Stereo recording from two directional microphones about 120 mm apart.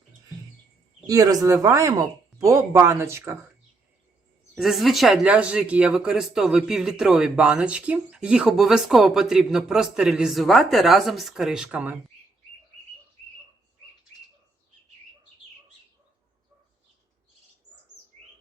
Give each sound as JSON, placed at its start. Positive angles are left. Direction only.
{"t": 1.0, "sound": "speech", "side_deg": -30}
{"t": 4.5, "sound": "speech", "side_deg": 0}